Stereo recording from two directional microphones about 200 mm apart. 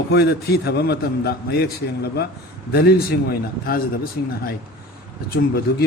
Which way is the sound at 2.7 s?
50° left (ahead or behind).